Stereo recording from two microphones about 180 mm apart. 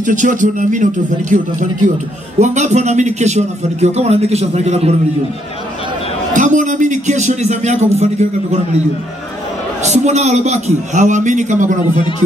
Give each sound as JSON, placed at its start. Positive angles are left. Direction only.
{"t": 0.0, "sound": "a man's voice", "side_deg": -45}
{"t": 6.3, "sound": "a man's voice", "side_deg": -45}
{"t": 9.8, "sound": "a man's voice", "side_deg": -40}